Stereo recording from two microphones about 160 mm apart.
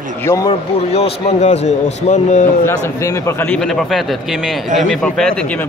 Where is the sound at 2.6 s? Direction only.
20° left (ahead or behind).